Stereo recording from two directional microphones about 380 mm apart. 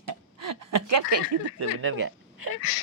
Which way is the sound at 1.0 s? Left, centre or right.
Right.